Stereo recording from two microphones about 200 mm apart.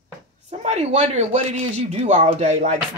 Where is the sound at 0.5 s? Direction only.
35° right (ahead or behind).